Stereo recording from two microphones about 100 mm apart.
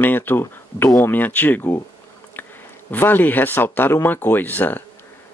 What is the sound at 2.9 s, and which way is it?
Speech, 20° left (ahead or behind).